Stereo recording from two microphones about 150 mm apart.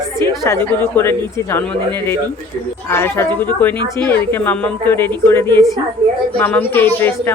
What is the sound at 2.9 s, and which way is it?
A woman's voice, 15° left (ahead or behind).